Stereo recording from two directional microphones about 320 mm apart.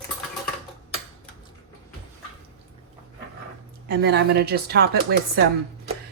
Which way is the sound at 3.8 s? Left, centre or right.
Right.